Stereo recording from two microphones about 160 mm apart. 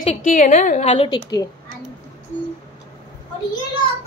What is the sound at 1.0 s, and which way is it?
Speech, 25° left (ahead or behind).